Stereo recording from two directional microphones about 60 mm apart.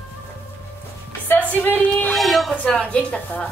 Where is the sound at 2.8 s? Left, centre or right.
Left.